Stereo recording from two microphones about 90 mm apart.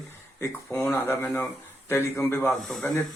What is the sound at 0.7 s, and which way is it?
A man's voice, 30° left (ahead or behind).